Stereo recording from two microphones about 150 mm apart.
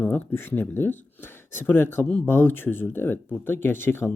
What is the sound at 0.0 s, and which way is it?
Speech, 15° left (ahead or behind).